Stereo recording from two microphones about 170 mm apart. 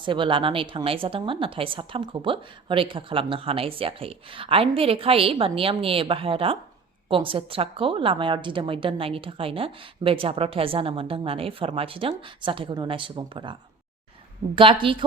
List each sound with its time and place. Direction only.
0.0 s a woman's voice: 30° right (ahead or behind)